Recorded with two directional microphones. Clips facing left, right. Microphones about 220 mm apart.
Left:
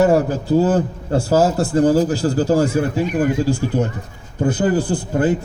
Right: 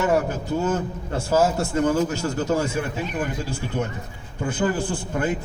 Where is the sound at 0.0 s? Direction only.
35° left (ahead or behind).